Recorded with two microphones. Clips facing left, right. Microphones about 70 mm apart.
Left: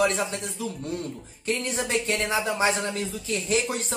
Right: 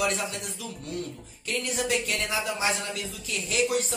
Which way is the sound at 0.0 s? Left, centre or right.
Left.